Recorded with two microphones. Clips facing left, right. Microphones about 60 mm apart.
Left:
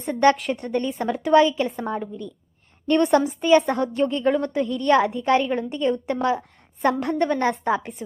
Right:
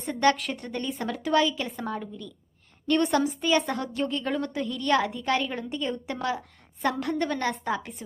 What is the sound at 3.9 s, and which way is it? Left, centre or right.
A woman's voice, centre.